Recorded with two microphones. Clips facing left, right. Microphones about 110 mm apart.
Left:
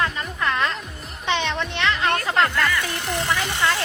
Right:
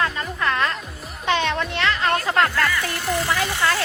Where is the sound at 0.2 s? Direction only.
20° left (ahead or behind).